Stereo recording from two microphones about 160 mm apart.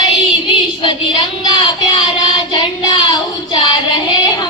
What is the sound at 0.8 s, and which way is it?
Child singing, 30° left (ahead or behind).